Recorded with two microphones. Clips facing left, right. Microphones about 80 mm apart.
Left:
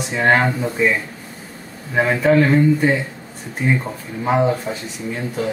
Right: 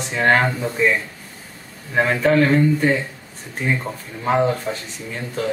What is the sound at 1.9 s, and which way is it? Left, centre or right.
Speech, centre.